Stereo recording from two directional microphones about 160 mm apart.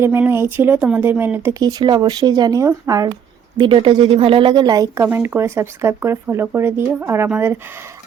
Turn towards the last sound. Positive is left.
turn(degrees=-15)  # may be behind; listen again after turning